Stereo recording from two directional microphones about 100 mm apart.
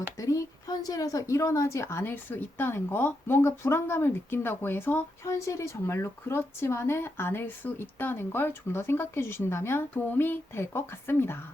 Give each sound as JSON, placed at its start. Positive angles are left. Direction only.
{"t": 0.8, "sound": "a woman's voice", "side_deg": 35}